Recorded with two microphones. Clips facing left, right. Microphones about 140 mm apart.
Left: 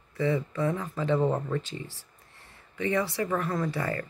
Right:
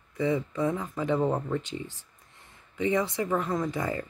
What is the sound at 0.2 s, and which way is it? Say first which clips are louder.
Speech: even; 15° right (ahead or behind).